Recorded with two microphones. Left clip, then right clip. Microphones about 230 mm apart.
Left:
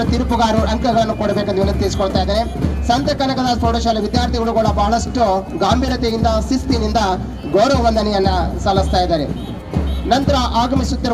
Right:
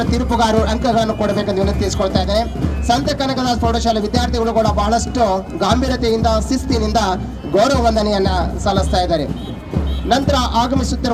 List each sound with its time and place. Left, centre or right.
0.0 s speech: right